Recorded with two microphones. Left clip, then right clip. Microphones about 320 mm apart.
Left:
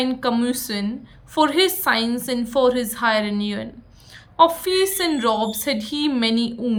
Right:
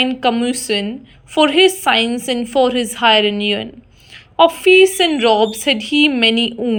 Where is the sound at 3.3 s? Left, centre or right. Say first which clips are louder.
Right 9 dB; right.